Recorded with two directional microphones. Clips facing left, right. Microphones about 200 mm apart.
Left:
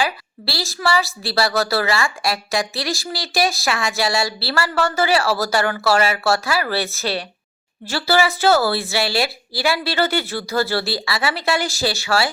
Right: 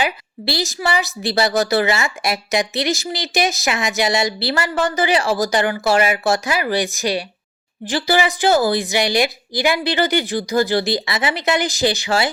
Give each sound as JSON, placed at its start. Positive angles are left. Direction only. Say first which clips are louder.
{"t": 0.0, "sound": "a woman's voice", "louder": "right 1 dB", "side_deg": -20}